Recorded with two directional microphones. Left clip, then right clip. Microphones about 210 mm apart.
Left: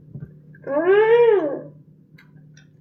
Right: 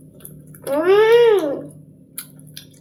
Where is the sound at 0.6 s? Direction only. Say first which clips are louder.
Right 2 dB; 15° right (ahead or behind).